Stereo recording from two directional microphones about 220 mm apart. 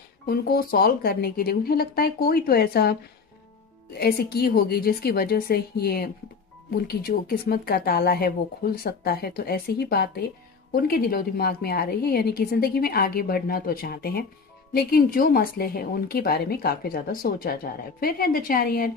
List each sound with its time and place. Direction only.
0.3 s a woman's voice: 45° left (ahead or behind)
4.0 s a woman's voice: 45° left (ahead or behind)